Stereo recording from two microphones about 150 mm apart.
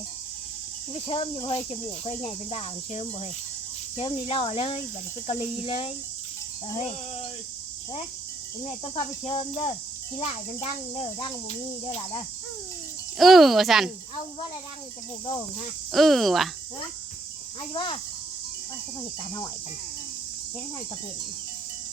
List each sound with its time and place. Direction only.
0.9 s cricket: 40° left (ahead or behind)
8.8 s cricket: 40° left (ahead or behind)
13.1 s speech: centre (ahead or behind)
15.9 s speech: centre (ahead or behind)
17.6 s cricket: 35° left (ahead or behind)